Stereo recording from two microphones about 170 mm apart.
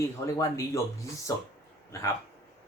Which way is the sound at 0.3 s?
20° left (ahead or behind).